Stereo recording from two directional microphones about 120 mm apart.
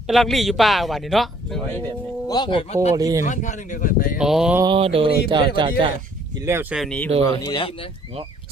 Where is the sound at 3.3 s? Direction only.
90° left.